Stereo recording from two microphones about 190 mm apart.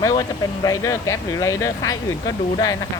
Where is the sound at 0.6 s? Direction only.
15° left (ahead or behind).